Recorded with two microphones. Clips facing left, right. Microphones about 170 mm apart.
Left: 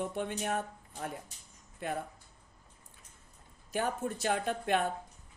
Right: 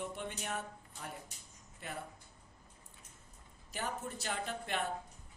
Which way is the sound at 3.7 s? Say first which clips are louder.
Left 7 dB; 50° left (ahead or behind).